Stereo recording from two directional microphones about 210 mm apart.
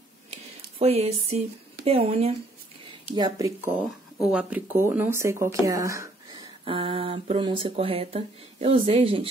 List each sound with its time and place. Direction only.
0.7 s speech: 30° right (ahead or behind)
3.1 s speech: 20° right (ahead or behind)
4.3 s speech: 5° right (ahead or behind); by 9.3 s 25° right (ahead or behind)